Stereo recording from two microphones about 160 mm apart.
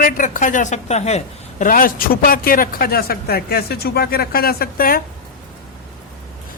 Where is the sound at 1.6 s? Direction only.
60° left (ahead or behind).